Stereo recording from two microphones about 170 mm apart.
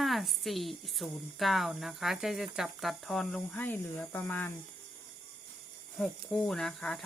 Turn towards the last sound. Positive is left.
turn(degrees=0)  # may be behind; listen again after turning